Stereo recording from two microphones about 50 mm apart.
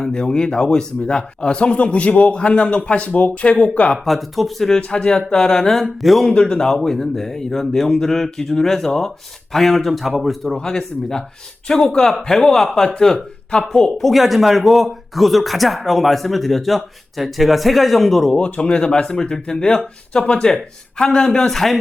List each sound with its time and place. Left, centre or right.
0.0 s speech: centre
4.0 s speech: centre
4.9 s speech: centre
6.3 s speech: centre
10.6 s speech: centre
18.3 s speech: left; by 21.8 s centre